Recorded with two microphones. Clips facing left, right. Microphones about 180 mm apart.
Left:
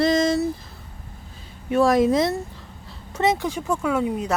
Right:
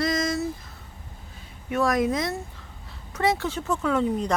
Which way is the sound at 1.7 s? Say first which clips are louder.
Left 6 dB; 30° left (ahead or behind).